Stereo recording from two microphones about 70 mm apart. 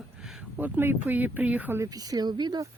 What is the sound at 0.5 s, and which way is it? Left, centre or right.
Speech, right.